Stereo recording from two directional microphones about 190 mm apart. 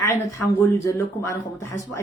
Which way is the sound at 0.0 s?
15° left (ahead or behind).